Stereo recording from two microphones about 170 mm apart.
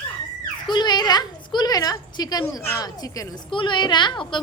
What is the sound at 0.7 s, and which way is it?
A woman's voice, 25° left (ahead or behind).